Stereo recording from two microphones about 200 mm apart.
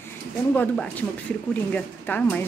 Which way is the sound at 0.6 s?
10° left (ahead or behind).